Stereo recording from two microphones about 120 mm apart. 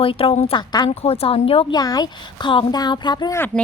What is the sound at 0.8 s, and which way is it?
Speech, 55° left (ahead or behind).